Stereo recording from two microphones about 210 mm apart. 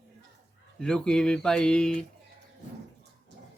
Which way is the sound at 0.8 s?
5° left (ahead or behind).